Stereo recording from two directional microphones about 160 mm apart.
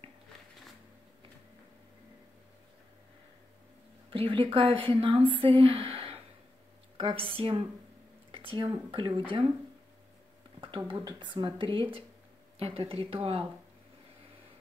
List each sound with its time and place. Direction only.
4.1 s speech: 35° right (ahead or behind)
10.9 s speech: 30° right (ahead or behind)